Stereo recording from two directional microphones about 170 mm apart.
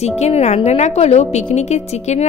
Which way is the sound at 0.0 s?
40° left (ahead or behind).